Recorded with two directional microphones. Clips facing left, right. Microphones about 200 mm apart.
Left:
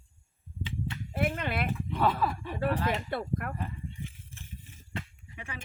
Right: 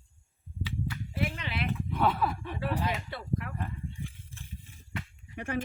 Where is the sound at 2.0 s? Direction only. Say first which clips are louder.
Even; centre (ahead or behind).